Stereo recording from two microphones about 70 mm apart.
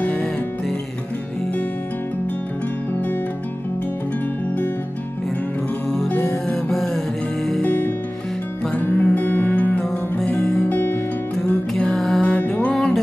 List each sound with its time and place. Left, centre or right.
0.0 s music: centre
6.2 s music: centre
7.6 s music: left
9.8 s music: centre
10.7 s music: left
11.3 s music: centre
12.2 s music: centre